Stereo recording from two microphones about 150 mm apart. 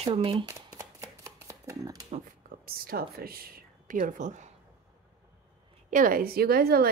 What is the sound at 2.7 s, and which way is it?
Speech, 85° right.